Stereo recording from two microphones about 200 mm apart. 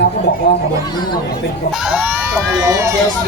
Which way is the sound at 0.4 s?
55° left (ahead or behind).